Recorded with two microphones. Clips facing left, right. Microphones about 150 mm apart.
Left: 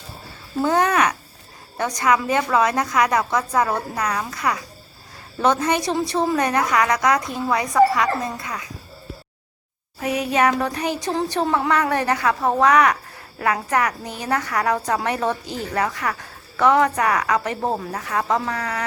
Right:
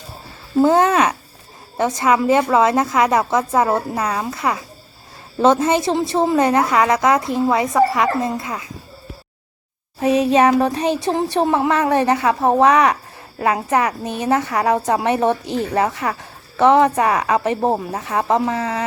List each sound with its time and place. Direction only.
0.6 s a child's voice: 25° right (ahead or behind)
10.0 s a woman's voice: 30° right (ahead or behind)